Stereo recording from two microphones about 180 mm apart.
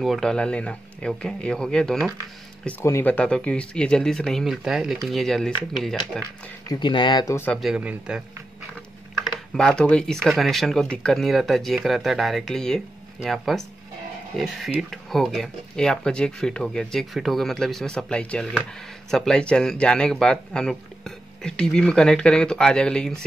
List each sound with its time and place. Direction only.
0.0 s speech: centre (ahead or behind)
2.6 s speech: 15° left (ahead or behind)
6.7 s speech: 25° left (ahead or behind)
7.6 s speech: 5° right (ahead or behind)
9.2 s speech: centre (ahead or behind)